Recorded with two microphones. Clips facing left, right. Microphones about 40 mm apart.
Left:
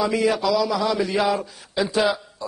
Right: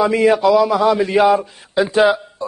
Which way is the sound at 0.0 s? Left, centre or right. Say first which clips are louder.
Right 7 dB; right.